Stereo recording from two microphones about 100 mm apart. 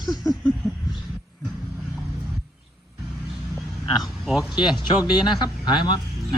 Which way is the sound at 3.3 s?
Centre (ahead or behind).